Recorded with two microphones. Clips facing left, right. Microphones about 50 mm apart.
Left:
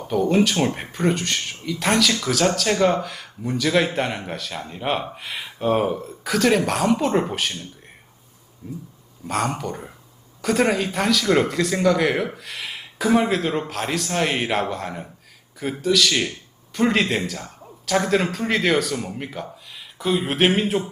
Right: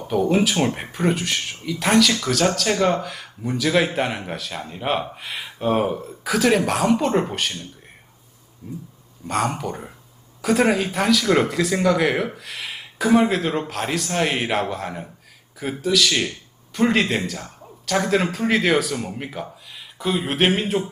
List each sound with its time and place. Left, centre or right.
0.1 s speech: centre